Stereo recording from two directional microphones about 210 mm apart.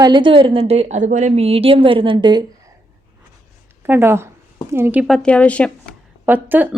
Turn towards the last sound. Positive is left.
turn(degrees=-10)  # may be behind; listen again after turning